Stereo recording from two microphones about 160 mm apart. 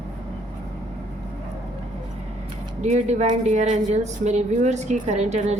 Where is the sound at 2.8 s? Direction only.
45° right (ahead or behind).